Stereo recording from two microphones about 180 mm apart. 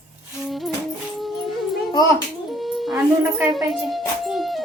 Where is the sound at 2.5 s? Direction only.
Centre (ahead or behind).